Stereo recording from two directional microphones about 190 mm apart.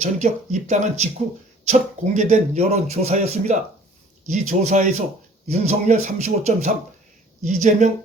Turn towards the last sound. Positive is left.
turn(degrees=-40)  # may be behind; listen again after turning